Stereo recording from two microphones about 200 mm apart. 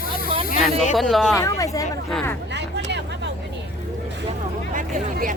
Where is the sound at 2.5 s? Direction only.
60° right (ahead or behind).